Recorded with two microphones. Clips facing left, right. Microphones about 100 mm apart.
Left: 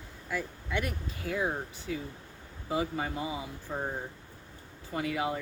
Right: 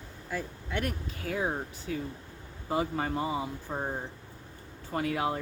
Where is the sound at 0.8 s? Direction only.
45° right (ahead or behind).